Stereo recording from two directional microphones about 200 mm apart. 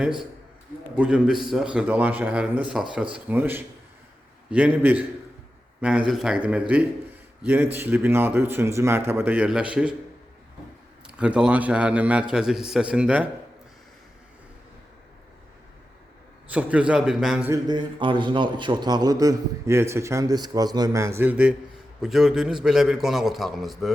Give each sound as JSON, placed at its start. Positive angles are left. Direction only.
{"t": 0.9, "sound": "a man's voice", "side_deg": -5}
{"t": 6.1, "sound": "a man's voice", "side_deg": 0}
{"t": 11.0, "sound": "a man's voice", "side_deg": -5}
{"t": 16.5, "sound": "a man's voice", "side_deg": -5}
{"t": 17.5, "sound": "a man's voice", "side_deg": -20}